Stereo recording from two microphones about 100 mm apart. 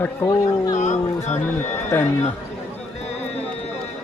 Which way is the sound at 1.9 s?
20° left (ahead or behind).